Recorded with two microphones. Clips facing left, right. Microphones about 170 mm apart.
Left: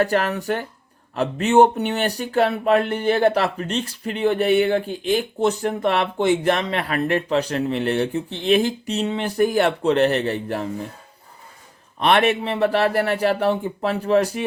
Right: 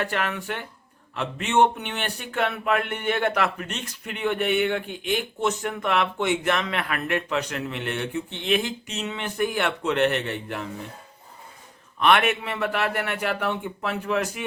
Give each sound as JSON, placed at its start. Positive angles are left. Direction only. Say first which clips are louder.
{"t": 0.0, "sound": "speech", "louder": "left 7 dB", "side_deg": 40}
{"t": 11.9, "sound": "speech", "louder": "left 3 dB", "side_deg": 35}